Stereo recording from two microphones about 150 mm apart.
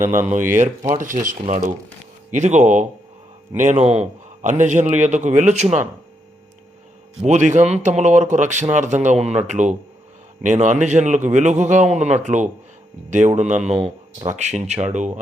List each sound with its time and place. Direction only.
0.0 s speech: 15° right (ahead or behind)
0.3 s speech: 55° right (ahead or behind)
7.3 s speech: 55° right (ahead or behind)